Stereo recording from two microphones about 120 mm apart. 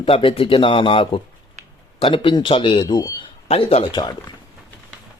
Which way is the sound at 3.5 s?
55° left (ahead or behind).